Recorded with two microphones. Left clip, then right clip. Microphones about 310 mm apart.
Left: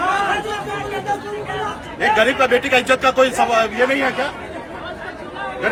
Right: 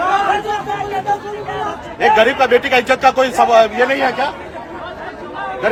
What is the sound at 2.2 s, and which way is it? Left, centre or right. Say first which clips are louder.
A man's voice: right 1 dB; centre.